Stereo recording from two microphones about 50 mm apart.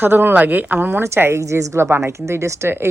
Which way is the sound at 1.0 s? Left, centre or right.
Right.